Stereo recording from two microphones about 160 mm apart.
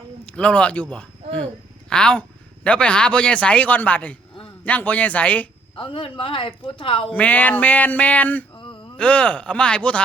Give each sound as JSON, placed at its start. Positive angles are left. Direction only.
{"t": 0.3, "sound": "a man's voice", "side_deg": 5}
{"t": 5.7, "sound": "a woman's voice", "side_deg": 35}
{"t": 7.1, "sound": "a man's voice", "side_deg": 10}
{"t": 8.5, "sound": "a sound", "side_deg": 30}
{"t": 9.0, "sound": "a man's voice", "side_deg": 10}